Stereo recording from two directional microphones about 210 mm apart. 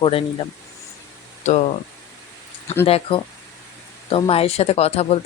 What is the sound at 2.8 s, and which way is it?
Speech, 25° left (ahead or behind).